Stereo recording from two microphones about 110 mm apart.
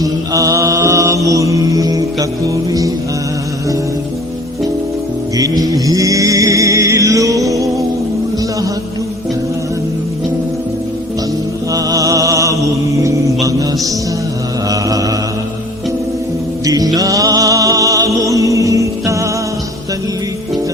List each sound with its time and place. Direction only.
0.0 s mantra: 30° right (ahead or behind)
5.4 s music: 35° right (ahead or behind)
11.7 s music: 30° right (ahead or behind)
12.9 s mantra: 30° right (ahead or behind)
14.7 s mantra: 30° right (ahead or behind)
16.6 s music: 35° right (ahead or behind)